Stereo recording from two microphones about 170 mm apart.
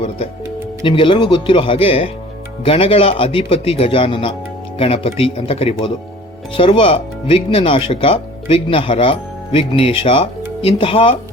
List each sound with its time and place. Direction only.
0.9 s speech: 30° left (ahead or behind)